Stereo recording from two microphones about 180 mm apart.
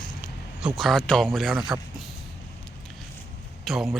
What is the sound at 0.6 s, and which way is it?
Speech, centre (ahead or behind).